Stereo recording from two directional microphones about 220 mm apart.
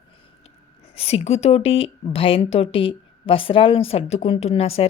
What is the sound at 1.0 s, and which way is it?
Speech, 25° left (ahead or behind).